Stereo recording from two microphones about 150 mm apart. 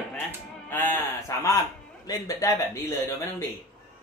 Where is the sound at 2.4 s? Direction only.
20° left (ahead or behind).